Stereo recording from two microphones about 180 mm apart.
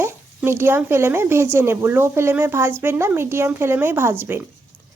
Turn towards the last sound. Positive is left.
turn(degrees=-15)  # may be behind; listen again after turning